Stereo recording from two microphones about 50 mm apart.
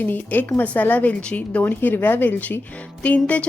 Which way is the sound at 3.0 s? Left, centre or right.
Left.